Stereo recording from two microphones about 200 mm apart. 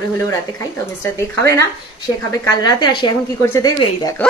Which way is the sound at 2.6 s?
20° left (ahead or behind).